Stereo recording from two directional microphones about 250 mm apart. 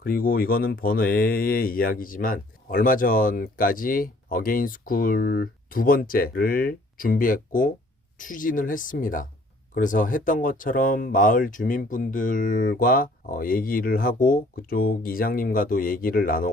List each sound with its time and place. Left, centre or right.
0.0 s speech: left